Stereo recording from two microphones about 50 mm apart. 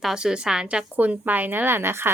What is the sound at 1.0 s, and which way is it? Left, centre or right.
A woman's voice, right.